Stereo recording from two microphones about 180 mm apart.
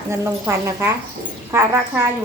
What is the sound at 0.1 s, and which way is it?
A woman's voice, 15° right (ahead or behind).